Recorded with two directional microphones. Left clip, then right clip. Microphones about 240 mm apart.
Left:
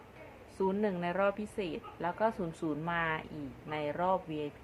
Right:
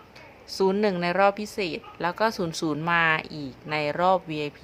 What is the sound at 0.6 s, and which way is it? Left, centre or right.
A woman's voice, right.